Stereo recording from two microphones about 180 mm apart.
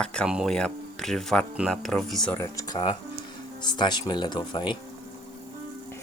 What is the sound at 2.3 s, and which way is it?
Speech, 20° left (ahead or behind).